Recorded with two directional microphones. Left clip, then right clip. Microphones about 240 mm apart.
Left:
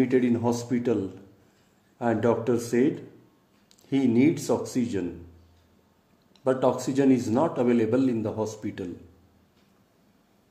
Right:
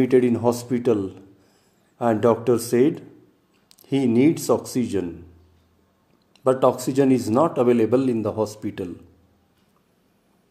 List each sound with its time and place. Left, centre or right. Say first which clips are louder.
0.0 s a man's voice: right 6 dB; right
6.4 s a man's voice: right 5 dB; right